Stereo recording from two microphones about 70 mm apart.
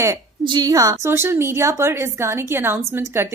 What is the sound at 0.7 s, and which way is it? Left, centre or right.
Speech, right.